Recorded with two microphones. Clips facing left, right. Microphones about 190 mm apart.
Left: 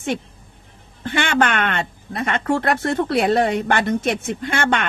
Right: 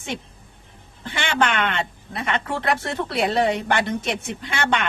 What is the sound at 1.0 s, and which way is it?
Speech, 55° left (ahead or behind).